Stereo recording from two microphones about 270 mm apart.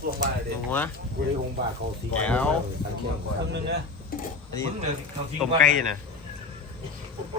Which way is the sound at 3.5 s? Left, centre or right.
Right.